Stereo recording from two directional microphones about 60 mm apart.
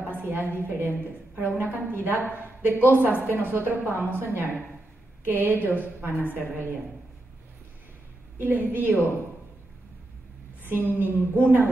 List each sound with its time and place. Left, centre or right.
0.1 s a sound: right
0.6 s a woman's voice: right
8.4 s a woman's voice: right
10.6 s a woman's voice: right